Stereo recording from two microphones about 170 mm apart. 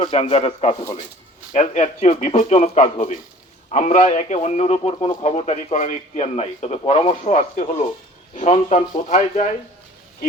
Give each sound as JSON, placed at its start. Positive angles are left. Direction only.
{"t": 0.0, "sound": "a man's voice", "side_deg": 35}